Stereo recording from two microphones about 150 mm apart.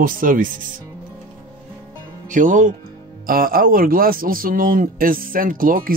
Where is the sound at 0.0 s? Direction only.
65° right (ahead or behind).